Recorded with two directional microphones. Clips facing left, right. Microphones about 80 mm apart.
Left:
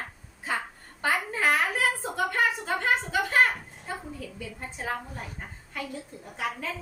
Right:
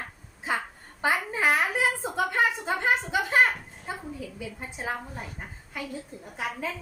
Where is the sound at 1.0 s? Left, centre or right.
Centre.